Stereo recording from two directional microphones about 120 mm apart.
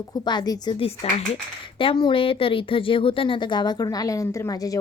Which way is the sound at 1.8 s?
45° left (ahead or behind).